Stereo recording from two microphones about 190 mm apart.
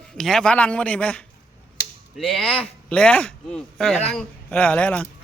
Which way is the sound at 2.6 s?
5° left (ahead or behind).